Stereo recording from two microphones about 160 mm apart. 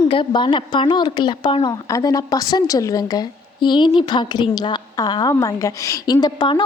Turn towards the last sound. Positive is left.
turn(degrees=25)  # may be behind; listen again after turning